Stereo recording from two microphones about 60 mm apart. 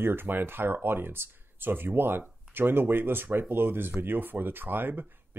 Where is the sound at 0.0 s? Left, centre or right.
Right.